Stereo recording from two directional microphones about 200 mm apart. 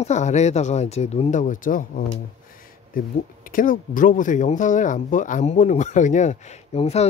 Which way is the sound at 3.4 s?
45° left (ahead or behind).